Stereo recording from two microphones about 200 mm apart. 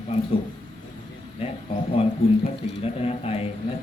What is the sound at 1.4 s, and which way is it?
Speech, 30° left (ahead or behind).